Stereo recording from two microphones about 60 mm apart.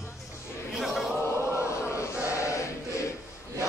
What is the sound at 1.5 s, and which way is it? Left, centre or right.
Chant, left.